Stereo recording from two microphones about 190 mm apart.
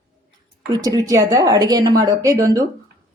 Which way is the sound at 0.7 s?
20° right (ahead or behind).